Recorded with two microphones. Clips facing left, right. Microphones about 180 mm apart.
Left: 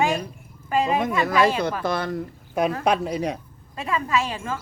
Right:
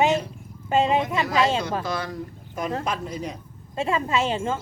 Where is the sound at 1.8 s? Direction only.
55° left (ahead or behind).